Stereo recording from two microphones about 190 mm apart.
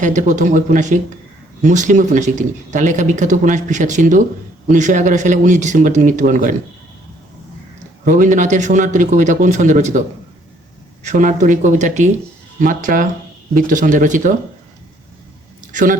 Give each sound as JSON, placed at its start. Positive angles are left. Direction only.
{"t": 0.0, "sound": "speech", "side_deg": -40}
{"t": 8.0, "sound": "speech", "side_deg": -40}
{"t": 11.0, "sound": "speech", "side_deg": -40}
{"t": 15.7, "sound": "speech", "side_deg": -45}